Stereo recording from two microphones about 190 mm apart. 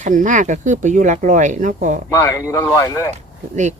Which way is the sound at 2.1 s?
15° left (ahead or behind).